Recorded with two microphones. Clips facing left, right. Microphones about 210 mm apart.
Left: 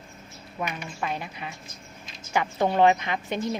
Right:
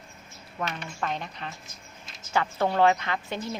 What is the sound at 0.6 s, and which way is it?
A woman's voice, 10° left (ahead or behind).